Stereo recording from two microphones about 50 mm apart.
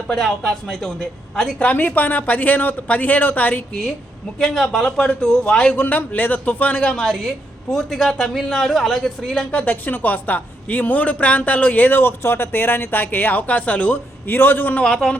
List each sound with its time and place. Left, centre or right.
0.2 s a woman's voice: centre
1.5 s a man's voice: left
4.4 s a woman's voice: centre
5.7 s a man's voice: left
6.9 s a woman's voice: centre
9.5 s a man's voice: left
13.9 s a man's voice: left
14.8 s a woman's voice: centre